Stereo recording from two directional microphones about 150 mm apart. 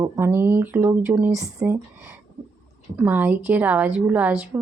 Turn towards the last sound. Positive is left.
turn(degrees=-10)  # may be behind; listen again after turning